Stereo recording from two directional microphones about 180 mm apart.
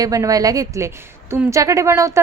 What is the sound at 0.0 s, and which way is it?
A woman's voice, 20° right (ahead or behind).